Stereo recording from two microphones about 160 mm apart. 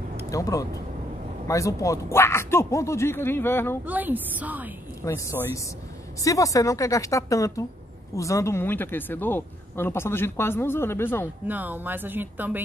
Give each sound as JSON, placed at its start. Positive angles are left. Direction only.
{"t": 0.3, "sound": "a woman's voice", "side_deg": 20}
{"t": 3.8, "sound": "speech", "side_deg": -10}
{"t": 5.0, "sound": "a woman's voice", "side_deg": 20}
{"t": 11.4, "sound": "speech", "side_deg": -10}